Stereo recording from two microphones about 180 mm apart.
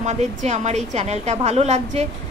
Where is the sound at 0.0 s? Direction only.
40° right (ahead or behind).